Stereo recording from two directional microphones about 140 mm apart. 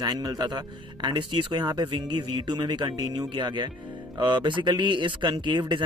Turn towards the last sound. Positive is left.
turn(degrees=-35)  # may be behind; listen again after turning